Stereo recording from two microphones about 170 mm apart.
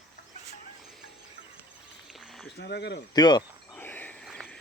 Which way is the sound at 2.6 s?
75° left (ahead or behind).